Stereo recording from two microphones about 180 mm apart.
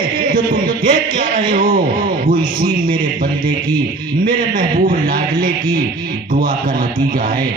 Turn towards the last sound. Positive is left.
turn(degrees=-50)  # may be behind; listen again after turning